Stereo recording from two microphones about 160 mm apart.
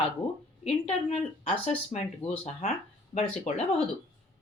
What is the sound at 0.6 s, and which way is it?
Speech, 35° left (ahead or behind).